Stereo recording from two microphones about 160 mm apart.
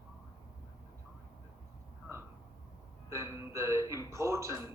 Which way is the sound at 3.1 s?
20° right (ahead or behind).